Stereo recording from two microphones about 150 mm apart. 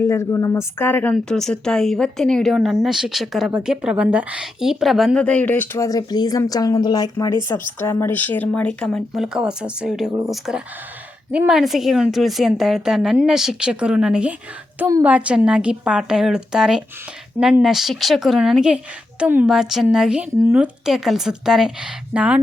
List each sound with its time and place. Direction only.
0.0 s a woman's voice: 20° left (ahead or behind); by 14.3 s 5° right (ahead or behind)
14.8 s a woman's voice: 20° right (ahead or behind)
15.0 s speech: 10° right (ahead or behind)